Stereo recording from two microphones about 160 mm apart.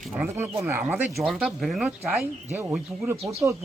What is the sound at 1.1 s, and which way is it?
Speech, centre (ahead or behind).